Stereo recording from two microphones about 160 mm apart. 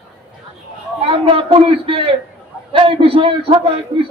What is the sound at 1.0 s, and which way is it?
A man's voice, 35° right (ahead or behind).